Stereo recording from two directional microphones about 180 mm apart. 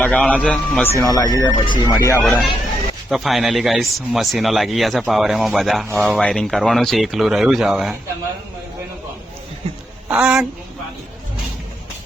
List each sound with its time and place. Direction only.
0.0 s speech: 5° left (ahead or behind)
2.2 s speech: centre (ahead or behind)
10.1 s speech: 5° right (ahead or behind)